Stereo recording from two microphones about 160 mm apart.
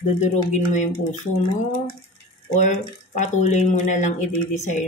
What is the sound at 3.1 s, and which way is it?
Speech, 50° left (ahead or behind).